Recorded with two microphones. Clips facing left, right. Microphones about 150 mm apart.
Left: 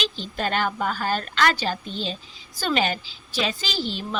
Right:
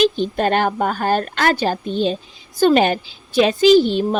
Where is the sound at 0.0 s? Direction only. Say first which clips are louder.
Right 11 dB; 50° right (ahead or behind).